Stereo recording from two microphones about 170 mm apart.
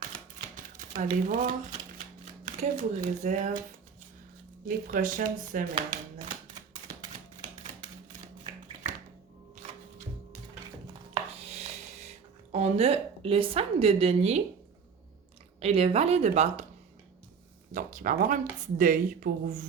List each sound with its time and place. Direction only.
0.5 s a sound: 50° right (ahead or behind)
2.4 s speech: 50° right (ahead or behind)
4.9 s speech: 50° right (ahead or behind)
11.1 s a sound: 35° right (ahead or behind)
15.6 s a woman's voice: 35° right (ahead or behind)
17.7 s speech: 50° right (ahead or behind)